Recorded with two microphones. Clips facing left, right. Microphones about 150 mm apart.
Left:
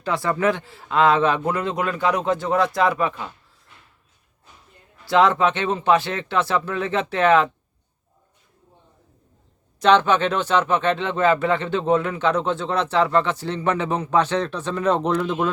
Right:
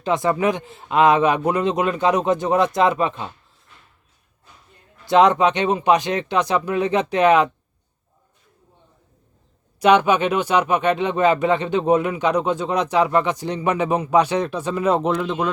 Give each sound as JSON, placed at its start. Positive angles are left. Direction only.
{"t": 0.0, "sound": "a man's voice", "side_deg": -20}
{"t": 5.0, "sound": "speech", "side_deg": -20}
{"t": 9.8, "sound": "speech", "side_deg": -10}